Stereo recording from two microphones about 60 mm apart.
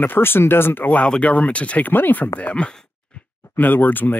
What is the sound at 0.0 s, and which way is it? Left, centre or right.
Speech, left.